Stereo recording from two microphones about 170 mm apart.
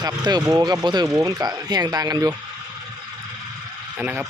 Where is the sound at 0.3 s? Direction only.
25° right (ahead or behind).